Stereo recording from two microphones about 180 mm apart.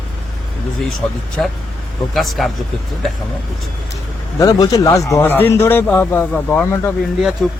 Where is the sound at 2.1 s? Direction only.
Centre (ahead or behind).